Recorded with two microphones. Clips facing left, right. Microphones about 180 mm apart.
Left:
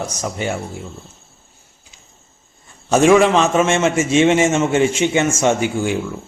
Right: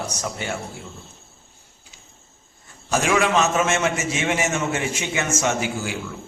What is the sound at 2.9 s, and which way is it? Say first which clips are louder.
A man's voice: left 9 dB; 30° left (ahead or behind).